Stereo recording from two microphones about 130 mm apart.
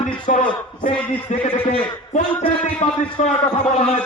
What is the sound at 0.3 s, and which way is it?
A man's voice, 65° left (ahead or behind).